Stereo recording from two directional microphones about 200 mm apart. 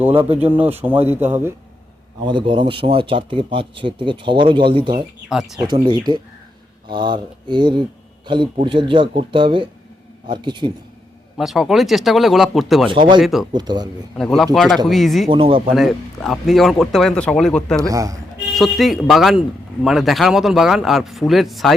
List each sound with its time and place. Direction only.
0.0 s speech: 10° right (ahead or behind)
2.2 s speech: 25° right (ahead or behind)
5.3 s speech: 5° right (ahead or behind)
5.6 s speech: 20° right (ahead or behind)
11.3 s speech: centre (ahead or behind)
12.9 s speech: 25° right (ahead or behind)
13.2 s speech: centre (ahead or behind)
13.5 s speech: 20° right (ahead or behind)
14.2 s speech: centre (ahead or behind)
15.3 s speech: 25° right (ahead or behind)
15.7 s speech: centre (ahead or behind)
17.7 s speech: 15° right (ahead or behind)
18.5 s speech: centre (ahead or behind)